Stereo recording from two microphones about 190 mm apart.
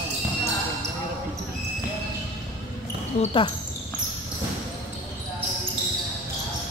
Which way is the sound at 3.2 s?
30° left (ahead or behind).